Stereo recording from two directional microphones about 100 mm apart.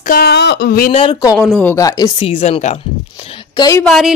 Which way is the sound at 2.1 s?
75° left (ahead or behind).